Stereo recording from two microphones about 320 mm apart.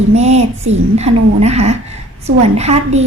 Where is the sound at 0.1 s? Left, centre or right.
Centre.